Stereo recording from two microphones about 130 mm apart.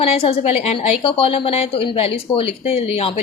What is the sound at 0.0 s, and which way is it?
A woman's voice, 50° left (ahead or behind).